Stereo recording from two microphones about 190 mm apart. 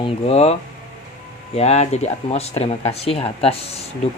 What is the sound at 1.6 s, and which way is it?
Speech, 35° left (ahead or behind).